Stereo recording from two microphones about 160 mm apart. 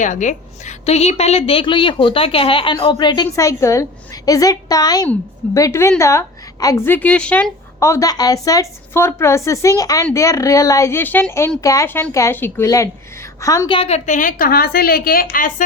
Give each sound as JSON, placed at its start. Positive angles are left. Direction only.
{"t": 0.0, "sound": "a woman's voice", "side_deg": 50}
{"t": 13.7, "sound": "a woman's voice", "side_deg": 40}